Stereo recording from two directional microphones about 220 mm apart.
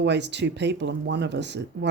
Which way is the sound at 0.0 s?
50° right (ahead or behind).